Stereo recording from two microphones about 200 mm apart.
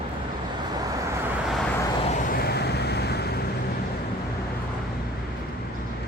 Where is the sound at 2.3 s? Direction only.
50° left (ahead or behind).